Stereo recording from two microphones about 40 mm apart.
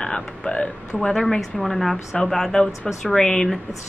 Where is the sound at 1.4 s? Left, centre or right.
Centre.